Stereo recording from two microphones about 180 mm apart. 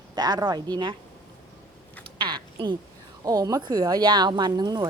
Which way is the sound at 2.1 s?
25° right (ahead or behind).